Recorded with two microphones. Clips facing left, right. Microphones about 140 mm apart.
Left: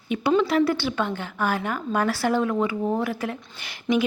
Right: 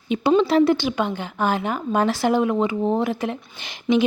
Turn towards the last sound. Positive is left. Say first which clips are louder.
# right 4 dB
turn(degrees=-25)  # may be behind; listen again after turning